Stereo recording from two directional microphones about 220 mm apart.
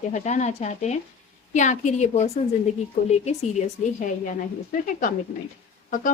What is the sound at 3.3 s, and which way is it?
A woman's voice, 30° left (ahead or behind).